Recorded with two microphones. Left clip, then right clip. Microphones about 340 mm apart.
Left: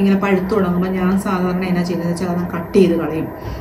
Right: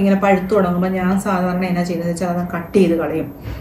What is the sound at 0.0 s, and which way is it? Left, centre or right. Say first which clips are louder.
Speech: right 2 dB; centre.